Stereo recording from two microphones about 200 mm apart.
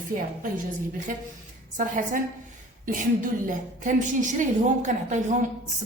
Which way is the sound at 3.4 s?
40° right (ahead or behind).